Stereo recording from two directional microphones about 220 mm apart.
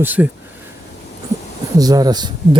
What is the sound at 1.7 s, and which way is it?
Speech, 15° right (ahead or behind).